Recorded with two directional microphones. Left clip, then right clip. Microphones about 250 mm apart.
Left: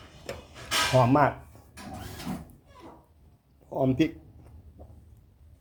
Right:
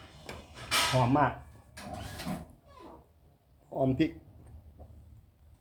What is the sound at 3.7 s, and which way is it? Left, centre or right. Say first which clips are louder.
Speech: left 3 dB; centre.